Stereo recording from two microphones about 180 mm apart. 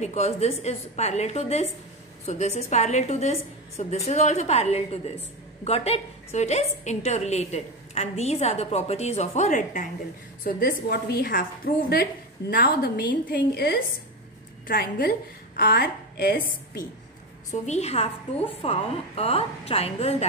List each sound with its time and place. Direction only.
0.0 s a woman's voice: 40° left (ahead or behind)
10.4 s a woman's voice: 55° left (ahead or behind)
17.5 s a woman's voice: 40° left (ahead or behind)